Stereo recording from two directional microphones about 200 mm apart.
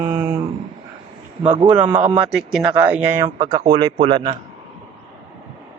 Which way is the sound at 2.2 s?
Centre (ahead or behind).